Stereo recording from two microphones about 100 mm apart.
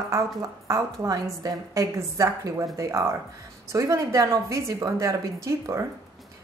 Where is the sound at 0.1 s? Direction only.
30° right (ahead or behind).